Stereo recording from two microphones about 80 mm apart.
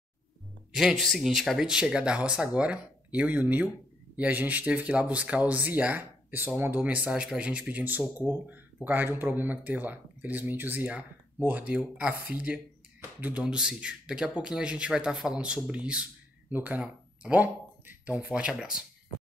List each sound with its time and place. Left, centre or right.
0.7 s speech: centre